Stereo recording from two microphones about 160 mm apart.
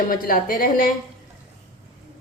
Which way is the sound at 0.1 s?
65° left (ahead or behind).